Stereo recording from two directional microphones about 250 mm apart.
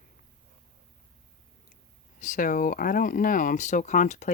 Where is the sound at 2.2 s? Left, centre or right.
Left.